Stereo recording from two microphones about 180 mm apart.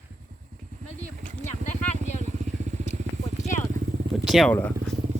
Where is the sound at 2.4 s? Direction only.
40° right (ahead or behind).